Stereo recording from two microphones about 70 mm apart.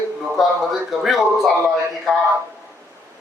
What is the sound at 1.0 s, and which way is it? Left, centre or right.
Speech, centre.